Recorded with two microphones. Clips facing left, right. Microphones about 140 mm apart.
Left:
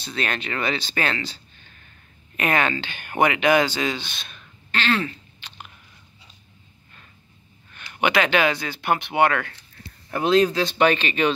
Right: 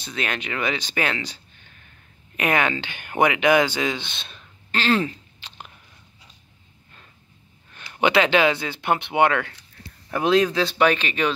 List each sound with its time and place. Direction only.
0.0 s speech: 15° right (ahead or behind)
7.9 s speech: 25° right (ahead or behind)
10.1 s speech: 5° right (ahead or behind)